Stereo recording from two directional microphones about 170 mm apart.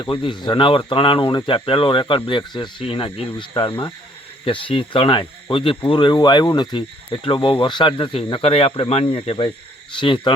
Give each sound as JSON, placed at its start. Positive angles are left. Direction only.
{"t": 0.0, "sound": "speech", "side_deg": 30}